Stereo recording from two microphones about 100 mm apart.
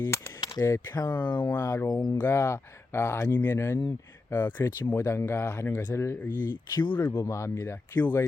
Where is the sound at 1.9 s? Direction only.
40° left (ahead or behind).